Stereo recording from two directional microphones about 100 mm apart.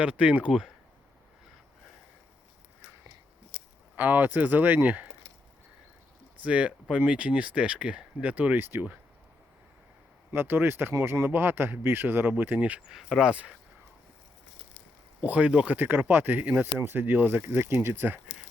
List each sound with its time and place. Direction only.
0.0 s speech: 10° right (ahead or behind)
3.9 s speech: 20° right (ahead or behind)
6.3 s speech: 15° right (ahead or behind)
10.3 s speech: 20° right (ahead or behind)
12.9 s speech: 5° right (ahead or behind)
15.2 s speech: 15° right (ahead or behind)